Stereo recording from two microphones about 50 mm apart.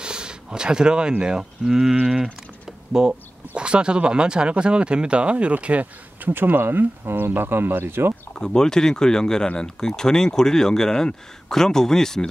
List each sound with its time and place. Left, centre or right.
0.0 s speech: centre
6.3 s speech: right
8.4 s speech: centre